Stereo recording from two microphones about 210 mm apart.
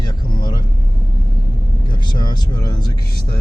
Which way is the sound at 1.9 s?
20° left (ahead or behind).